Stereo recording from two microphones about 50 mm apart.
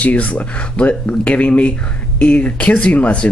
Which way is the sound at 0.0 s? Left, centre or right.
Left.